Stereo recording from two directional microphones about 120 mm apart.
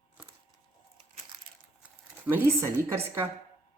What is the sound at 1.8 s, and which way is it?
Speech, 15° right (ahead or behind).